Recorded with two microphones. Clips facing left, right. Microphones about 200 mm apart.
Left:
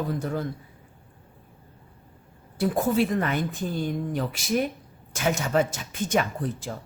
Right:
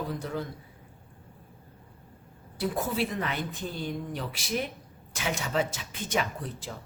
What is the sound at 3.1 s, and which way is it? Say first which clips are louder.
A man's voice: left 6 dB; 50° left (ahead or behind).